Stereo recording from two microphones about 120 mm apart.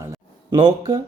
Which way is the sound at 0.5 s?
45° right (ahead or behind).